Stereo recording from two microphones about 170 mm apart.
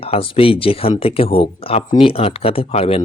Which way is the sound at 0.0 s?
35° left (ahead or behind).